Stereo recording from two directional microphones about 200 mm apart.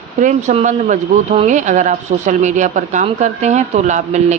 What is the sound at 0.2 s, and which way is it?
Speech, 35° right (ahead or behind).